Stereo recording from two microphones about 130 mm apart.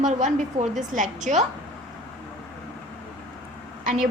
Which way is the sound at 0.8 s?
85° right.